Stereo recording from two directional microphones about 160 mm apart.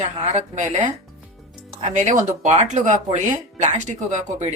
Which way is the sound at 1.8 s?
50° right (ahead or behind).